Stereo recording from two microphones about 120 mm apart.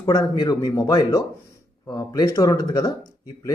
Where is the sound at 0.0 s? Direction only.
35° left (ahead or behind).